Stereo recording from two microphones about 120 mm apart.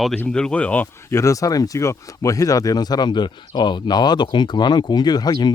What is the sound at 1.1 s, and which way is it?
Speech, 25° left (ahead or behind).